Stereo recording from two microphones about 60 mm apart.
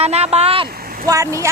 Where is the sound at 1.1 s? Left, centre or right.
Right.